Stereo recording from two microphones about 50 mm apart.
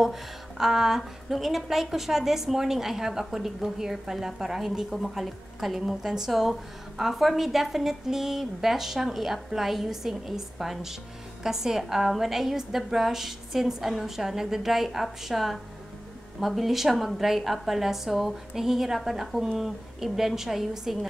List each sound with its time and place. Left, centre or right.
0.0 s a woman's voice: centre